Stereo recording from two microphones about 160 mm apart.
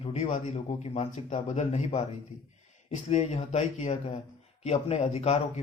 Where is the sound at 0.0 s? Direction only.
45° left (ahead or behind).